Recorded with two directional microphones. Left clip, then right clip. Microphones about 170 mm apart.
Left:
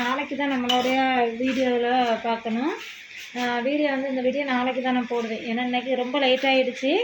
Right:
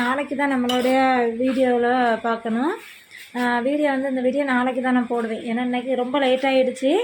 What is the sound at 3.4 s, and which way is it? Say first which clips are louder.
A woman's voice: right 3 dB; 15° right (ahead or behind).